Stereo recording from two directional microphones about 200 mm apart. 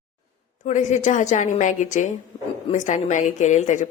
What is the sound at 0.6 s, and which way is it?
A woman's voice, 35° left (ahead or behind).